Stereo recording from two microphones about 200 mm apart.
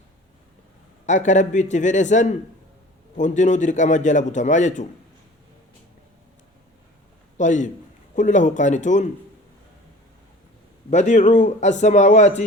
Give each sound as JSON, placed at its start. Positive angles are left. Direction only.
{"t": 1.0, "sound": "a man's voice", "side_deg": 35}
{"t": 7.3, "sound": "a man's voice", "side_deg": 40}
{"t": 10.9, "sound": "a man's voice", "side_deg": 35}